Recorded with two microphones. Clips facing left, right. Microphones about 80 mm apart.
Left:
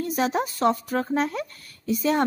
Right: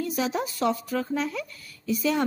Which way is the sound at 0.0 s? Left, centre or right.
Left.